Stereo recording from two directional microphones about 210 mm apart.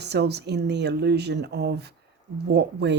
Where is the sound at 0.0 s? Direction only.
50° right (ahead or behind).